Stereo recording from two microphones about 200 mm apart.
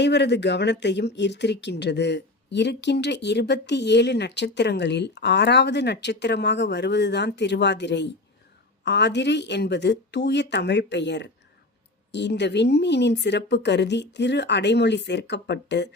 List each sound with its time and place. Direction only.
0.0 s speech: 60° left (ahead or behind)